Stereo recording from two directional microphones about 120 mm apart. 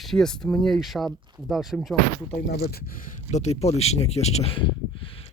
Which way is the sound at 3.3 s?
65° left (ahead or behind).